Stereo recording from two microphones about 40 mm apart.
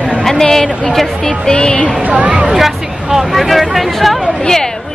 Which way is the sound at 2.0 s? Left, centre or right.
Right.